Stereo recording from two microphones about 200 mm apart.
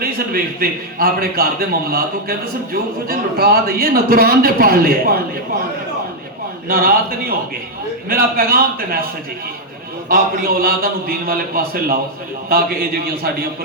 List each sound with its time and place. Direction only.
0.0 s a man's voice: 50° right (ahead or behind)
6.7 s a man's voice: 45° right (ahead or behind)
10.1 s a man's voice: 45° right (ahead or behind)